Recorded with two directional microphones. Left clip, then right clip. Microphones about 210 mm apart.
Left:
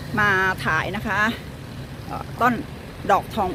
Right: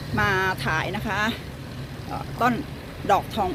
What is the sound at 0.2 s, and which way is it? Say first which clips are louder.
Speech: left 3 dB; 5° left (ahead or behind).